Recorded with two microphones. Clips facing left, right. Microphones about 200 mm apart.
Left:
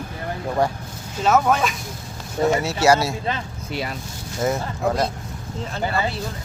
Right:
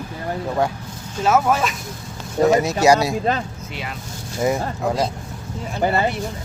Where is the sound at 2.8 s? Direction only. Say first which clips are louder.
Even; 15° right (ahead or behind).